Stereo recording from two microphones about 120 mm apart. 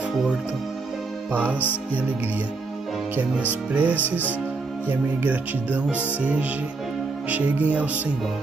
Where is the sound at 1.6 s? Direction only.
15° left (ahead or behind).